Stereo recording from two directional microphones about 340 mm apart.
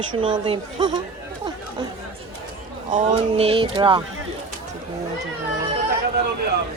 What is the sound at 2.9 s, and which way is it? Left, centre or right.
Speech, centre.